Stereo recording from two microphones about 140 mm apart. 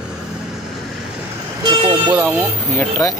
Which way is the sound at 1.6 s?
35° right (ahead or behind).